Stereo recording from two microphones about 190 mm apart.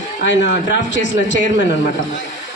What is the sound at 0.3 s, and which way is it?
Speech, 70° left (ahead or behind).